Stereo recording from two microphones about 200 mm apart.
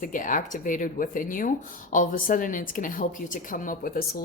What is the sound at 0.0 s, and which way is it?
Speech, 40° left (ahead or behind).